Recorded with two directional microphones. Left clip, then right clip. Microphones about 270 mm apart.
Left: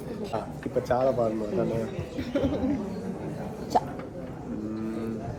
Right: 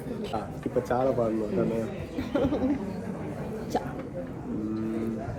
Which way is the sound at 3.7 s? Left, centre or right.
Left.